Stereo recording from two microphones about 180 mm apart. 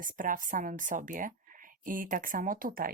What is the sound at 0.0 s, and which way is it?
A woman's voice, 50° right (ahead or behind).